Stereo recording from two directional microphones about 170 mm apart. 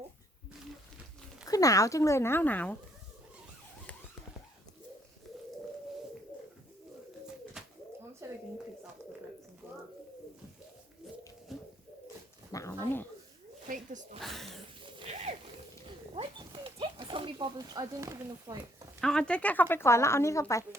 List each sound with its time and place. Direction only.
1.5 s speech: 20° left (ahead or behind)
7.6 s bird: 5° right (ahead or behind)
8.2 s a sound: 15° right (ahead or behind)
9.6 s bird: 10° right (ahead or behind)
11.5 s pigeon: centre (ahead or behind)
12.5 s dog: 20° left (ahead or behind)
13.7 s speech: 50° right (ahead or behind)
14.2 s speech: centre (ahead or behind)
14.8 s a sound: 30° right (ahead or behind)
15.1 s a sound: 40° right (ahead or behind)
16.1 s speech: 35° right (ahead or behind)
18.9 s speech: 5° left (ahead or behind)